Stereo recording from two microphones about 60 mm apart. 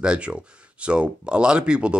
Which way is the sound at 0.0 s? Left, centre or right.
Centre.